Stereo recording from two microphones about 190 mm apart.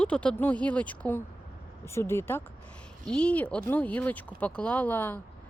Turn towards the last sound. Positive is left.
turn(degrees=10)  # may be behind; listen again after turning